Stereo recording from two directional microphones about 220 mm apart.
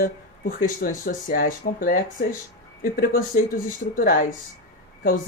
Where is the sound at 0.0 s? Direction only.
40° left (ahead or behind).